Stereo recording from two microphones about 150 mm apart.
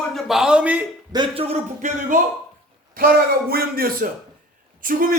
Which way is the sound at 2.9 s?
80° right.